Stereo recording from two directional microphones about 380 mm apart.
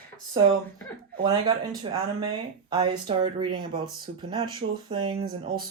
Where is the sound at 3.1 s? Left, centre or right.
Centre.